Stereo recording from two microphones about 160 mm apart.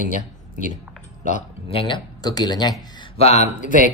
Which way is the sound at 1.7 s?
30° left (ahead or behind).